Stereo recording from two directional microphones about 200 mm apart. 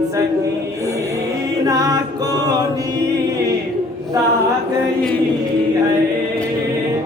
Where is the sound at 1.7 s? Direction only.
20° right (ahead or behind).